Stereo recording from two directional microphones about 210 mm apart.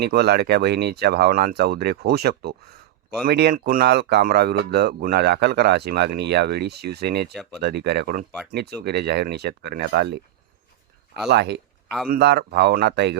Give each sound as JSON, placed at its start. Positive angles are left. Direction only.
{"t": 0.0, "sound": "speech", "side_deg": -50}
{"t": 11.3, "sound": "speech", "side_deg": -55}